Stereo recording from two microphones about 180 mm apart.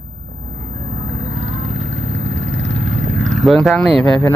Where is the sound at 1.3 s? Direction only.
65° left (ahead or behind).